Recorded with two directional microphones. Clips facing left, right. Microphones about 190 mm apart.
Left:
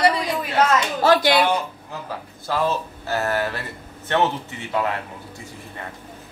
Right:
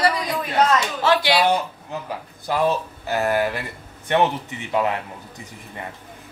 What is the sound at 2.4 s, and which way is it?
Speech, 15° right (ahead or behind).